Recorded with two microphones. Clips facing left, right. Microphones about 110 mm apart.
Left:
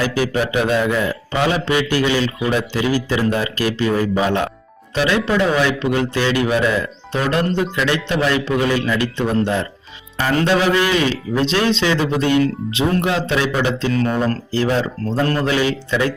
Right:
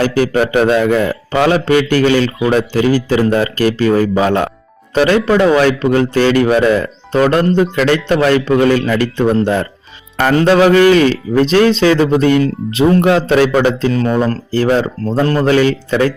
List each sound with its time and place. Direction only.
0.0 s speech: 50° right (ahead or behind)
13.6 s speech: 45° right (ahead or behind)
15.0 s speech: 35° right (ahead or behind)
15.4 s speech: 50° right (ahead or behind)